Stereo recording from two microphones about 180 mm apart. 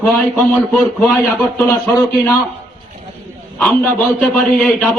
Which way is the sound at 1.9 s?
20° left (ahead or behind).